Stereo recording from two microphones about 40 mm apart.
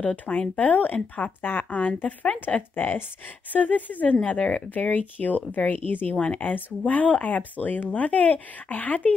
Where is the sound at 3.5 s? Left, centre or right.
Left.